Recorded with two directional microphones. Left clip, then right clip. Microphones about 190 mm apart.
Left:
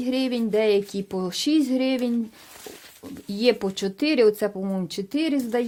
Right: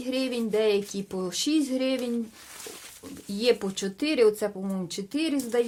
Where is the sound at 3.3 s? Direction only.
35° left (ahead or behind).